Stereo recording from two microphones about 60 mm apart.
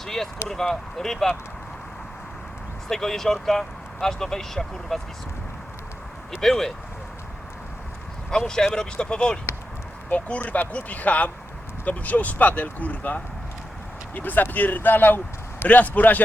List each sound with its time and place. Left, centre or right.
0.0 s a sound: centre
0.4 s speech: centre
2.9 s speech: centre
6.4 s speech: centre
8.3 s speech: centre
10.1 s speech: left